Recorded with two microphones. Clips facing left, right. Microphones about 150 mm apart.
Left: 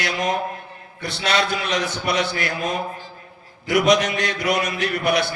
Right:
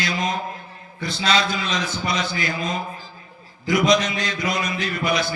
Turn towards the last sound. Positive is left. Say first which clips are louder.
# left 3 dB
turn(degrees=70)  # may be behind; listen again after turning